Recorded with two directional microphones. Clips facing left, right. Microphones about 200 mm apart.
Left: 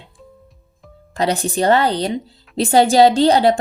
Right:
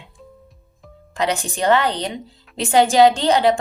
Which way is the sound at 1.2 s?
35° left (ahead or behind).